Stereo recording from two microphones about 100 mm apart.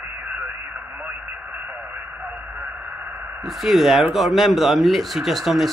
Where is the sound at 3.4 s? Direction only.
Centre (ahead or behind).